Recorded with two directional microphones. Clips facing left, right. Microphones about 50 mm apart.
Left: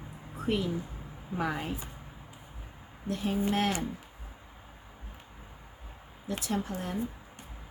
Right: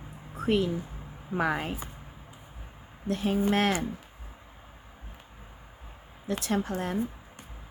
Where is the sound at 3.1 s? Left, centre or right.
Right.